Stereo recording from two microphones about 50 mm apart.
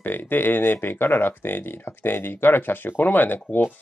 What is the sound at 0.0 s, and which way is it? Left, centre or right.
Speech, left.